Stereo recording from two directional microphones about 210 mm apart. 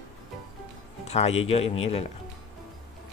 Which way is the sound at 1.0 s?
30° left (ahead or behind).